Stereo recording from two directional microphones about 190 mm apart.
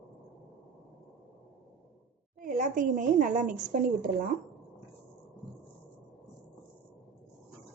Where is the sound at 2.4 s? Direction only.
45° right (ahead or behind).